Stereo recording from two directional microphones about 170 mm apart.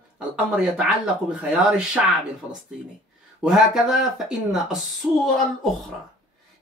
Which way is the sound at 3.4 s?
Centre (ahead or behind).